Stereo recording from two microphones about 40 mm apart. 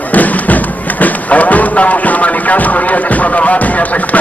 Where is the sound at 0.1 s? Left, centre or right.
Left.